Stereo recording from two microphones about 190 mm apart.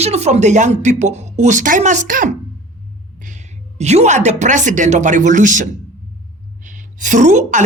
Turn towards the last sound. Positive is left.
turn(degrees=-40)  # may be behind; listen again after turning